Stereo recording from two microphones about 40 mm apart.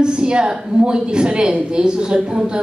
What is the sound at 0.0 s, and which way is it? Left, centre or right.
A woman's voice, right.